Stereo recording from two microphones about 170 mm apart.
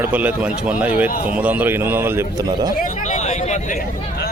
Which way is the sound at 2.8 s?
45° left (ahead or behind).